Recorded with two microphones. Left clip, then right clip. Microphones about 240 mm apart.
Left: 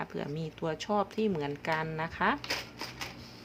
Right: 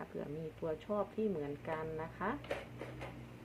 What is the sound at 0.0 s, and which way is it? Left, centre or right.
Speech, left.